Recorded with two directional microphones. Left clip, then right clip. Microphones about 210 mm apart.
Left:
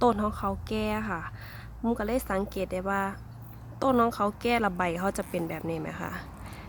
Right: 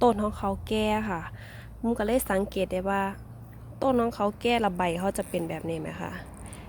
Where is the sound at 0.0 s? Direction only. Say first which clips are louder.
Right 1 dB; 5° right (ahead or behind).